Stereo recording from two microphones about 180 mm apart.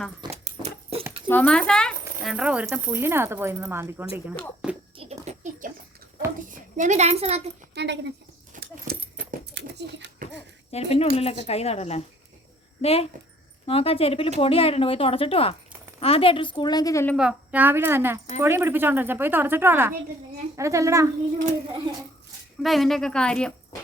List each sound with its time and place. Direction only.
0.2 s dog: 25° right (ahead or behind)
0.6 s a sound: 35° right (ahead or behind)
1.3 s speech: 5° left (ahead or behind)
2.3 s speech: 5° right (ahead or behind)
4.6 s a child's voice: 5° right (ahead or behind)
4.9 s a sound: 35° right (ahead or behind)
6.5 s a woman's voice: 45° right (ahead or behind)
7.7 s speech: 70° right (ahead or behind)
8.7 s a sound: 55° right (ahead or behind)
10.7 s a woman's voice: 35° left (ahead or behind); by 17.2 s 15° left (ahead or behind)
17.2 s speech: 5° right (ahead or behind)
22.6 s a woman's voice: centre (ahead or behind)